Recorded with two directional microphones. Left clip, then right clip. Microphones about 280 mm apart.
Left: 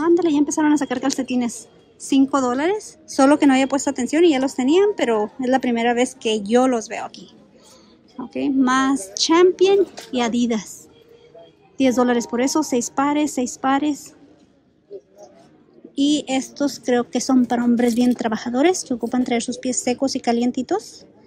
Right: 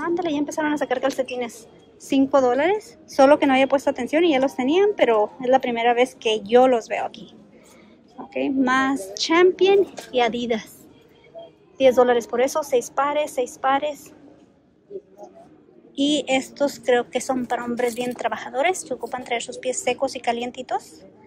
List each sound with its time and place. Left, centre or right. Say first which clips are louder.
0.1 s a sound: left 7 dB; centre
0.8 s a woman's voice: right 1 dB; centre
8.3 s a woman's voice: left 2 dB; centre
11.8 s a woman's voice: right 3 dB; centre
15.9 s a woman's voice: even; centre